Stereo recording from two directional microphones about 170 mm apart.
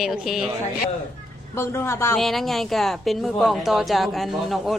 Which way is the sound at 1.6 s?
15° left (ahead or behind).